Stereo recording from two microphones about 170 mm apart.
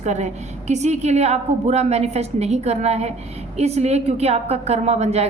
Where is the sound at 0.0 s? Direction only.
40° right (ahead or behind).